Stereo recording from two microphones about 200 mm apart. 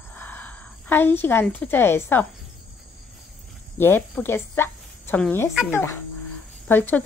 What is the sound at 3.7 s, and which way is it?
Speech, 10° left (ahead or behind).